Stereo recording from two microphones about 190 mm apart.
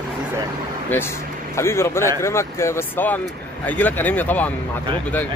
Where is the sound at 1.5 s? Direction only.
15° left (ahead or behind).